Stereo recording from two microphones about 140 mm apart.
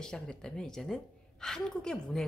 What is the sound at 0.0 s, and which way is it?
A woman's voice, 5° left (ahead or behind).